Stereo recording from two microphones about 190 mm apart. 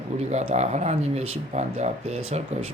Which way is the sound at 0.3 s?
35° right (ahead or behind).